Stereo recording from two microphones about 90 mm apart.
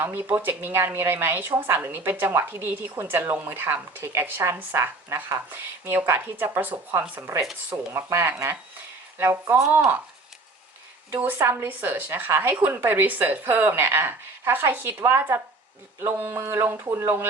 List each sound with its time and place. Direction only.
0.0 s a woman's voice: 20° right (ahead or behind)
11.1 s a woman's voice: 20° right (ahead or behind)